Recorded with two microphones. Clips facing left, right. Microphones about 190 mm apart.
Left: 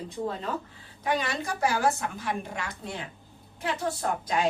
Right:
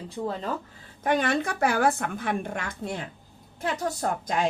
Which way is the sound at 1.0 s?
50° right (ahead or behind).